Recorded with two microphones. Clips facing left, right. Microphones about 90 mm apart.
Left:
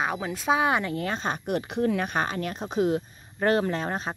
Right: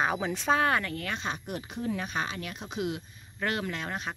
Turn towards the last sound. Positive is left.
turn(degrees=35)  # may be behind; listen again after turning